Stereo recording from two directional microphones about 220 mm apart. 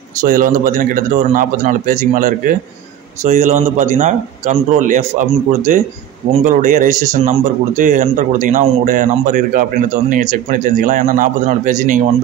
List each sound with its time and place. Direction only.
0.2 s speech: 40° right (ahead or behind)